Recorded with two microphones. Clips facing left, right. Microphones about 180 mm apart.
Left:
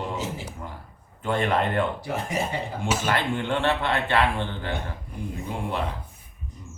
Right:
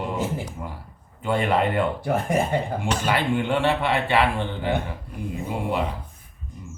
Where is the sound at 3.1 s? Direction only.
10° right (ahead or behind).